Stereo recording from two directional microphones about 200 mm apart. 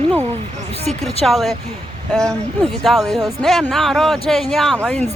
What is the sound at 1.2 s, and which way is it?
Speech, centre (ahead or behind).